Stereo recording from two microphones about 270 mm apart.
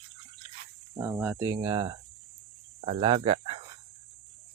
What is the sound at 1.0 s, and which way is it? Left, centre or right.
Speech, centre.